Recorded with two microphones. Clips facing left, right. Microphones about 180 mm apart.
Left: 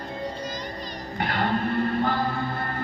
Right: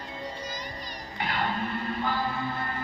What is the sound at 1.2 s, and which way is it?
Music, 45° left (ahead or behind).